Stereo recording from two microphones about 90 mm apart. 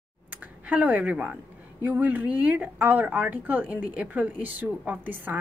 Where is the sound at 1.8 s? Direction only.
20° right (ahead or behind).